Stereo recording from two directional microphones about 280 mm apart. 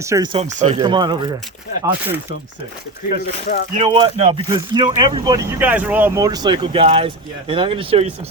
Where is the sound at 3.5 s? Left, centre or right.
Left.